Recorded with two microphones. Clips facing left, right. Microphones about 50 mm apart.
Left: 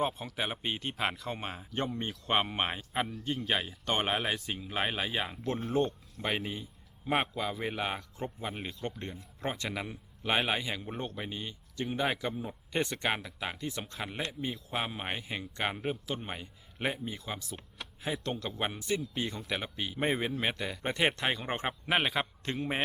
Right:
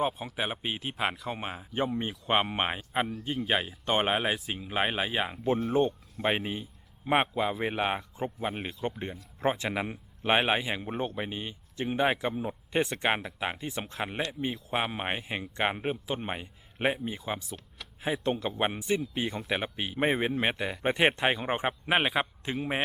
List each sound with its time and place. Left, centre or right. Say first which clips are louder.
0.0 s speech: right 2 dB; centre